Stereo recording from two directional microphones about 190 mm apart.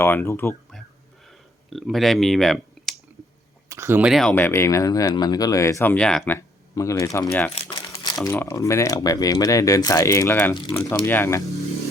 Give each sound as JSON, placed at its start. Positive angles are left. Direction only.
{"t": 0.0, "sound": "speech", "side_deg": 10}
{"t": 1.3, "sound": "a sound", "side_deg": 0}
{"t": 3.7, "sound": "speech", "side_deg": -15}
{"t": 7.6, "sound": "speech", "side_deg": 30}